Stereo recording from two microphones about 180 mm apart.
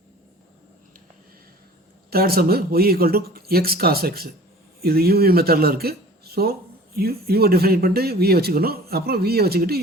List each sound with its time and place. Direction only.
2.0 s speech: 55° right (ahead or behind)